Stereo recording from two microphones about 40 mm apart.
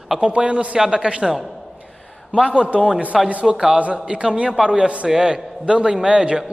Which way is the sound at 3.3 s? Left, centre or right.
Right.